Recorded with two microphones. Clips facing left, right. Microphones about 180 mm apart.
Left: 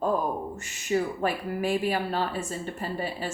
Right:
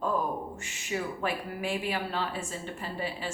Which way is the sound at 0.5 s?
40° left (ahead or behind).